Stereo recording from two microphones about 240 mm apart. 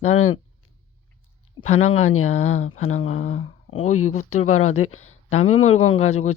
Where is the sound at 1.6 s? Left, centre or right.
Left.